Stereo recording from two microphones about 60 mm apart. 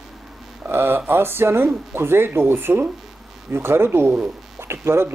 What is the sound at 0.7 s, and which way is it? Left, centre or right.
Speech, right.